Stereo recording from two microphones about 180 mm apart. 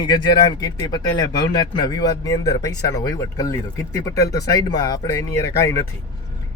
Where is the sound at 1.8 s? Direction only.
20° left (ahead or behind).